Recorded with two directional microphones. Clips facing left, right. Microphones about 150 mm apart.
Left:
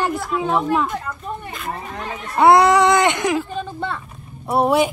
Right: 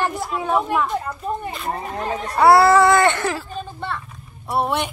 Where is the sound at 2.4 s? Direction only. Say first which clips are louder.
Even; 20° left (ahead or behind).